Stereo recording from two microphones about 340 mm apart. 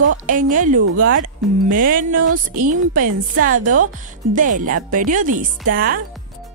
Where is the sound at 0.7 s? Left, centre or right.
Right.